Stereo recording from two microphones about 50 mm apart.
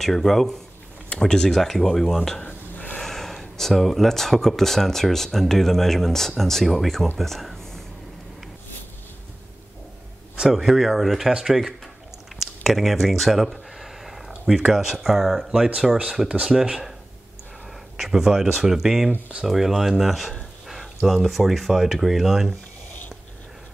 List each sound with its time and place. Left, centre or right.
0.0 s speech: centre
2.7 s snort: left
3.0 s speech: centre
7.2 s a sound: centre
10.5 s speech: centre
12.4 s a sound: centre
14.7 s speech: centre
17.9 s speech: centre